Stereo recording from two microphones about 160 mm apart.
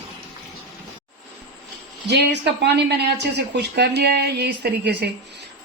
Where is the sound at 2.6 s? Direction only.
90° right.